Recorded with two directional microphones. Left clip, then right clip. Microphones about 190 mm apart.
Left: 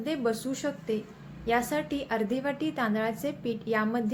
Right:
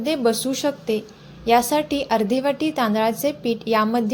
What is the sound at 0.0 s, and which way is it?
A woman's voice, 35° right (ahead or behind).